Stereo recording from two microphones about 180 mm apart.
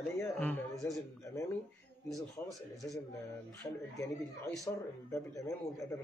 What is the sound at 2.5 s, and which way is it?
Speech, centre (ahead or behind).